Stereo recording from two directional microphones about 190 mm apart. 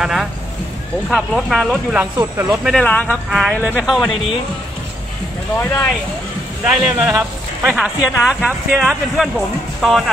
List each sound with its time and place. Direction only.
0.0 s speech: centre (ahead or behind)
2.1 s speech: 15° right (ahead or behind)
2.6 s speech: 5° left (ahead or behind)
5.6 s speech: 10° left (ahead or behind)
6.6 s speech: centre (ahead or behind)